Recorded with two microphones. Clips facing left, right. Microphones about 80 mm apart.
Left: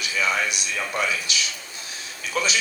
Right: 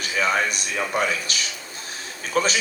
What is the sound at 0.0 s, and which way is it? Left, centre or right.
A man's voice, right.